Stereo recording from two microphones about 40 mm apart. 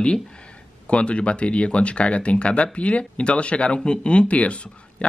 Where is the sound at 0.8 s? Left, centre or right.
Left.